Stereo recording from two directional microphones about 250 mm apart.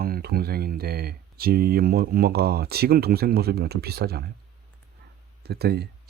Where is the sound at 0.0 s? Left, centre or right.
Right.